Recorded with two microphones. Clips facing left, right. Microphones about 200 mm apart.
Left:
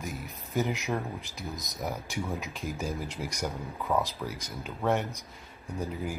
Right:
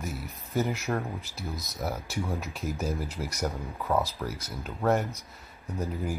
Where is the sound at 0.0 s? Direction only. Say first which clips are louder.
Right 1 dB; 15° left (ahead or behind).